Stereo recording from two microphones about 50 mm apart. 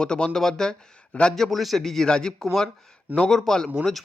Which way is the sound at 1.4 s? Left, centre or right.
Centre.